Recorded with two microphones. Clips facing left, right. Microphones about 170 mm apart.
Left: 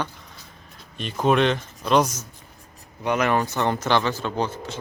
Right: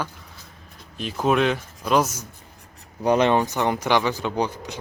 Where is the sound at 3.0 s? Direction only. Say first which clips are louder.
Right 3 dB; 30° right (ahead or behind); by 4.8 s 15° right (ahead or behind).